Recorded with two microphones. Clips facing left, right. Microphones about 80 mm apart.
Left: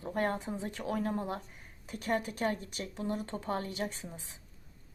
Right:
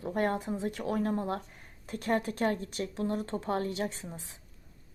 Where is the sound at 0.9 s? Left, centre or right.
Right.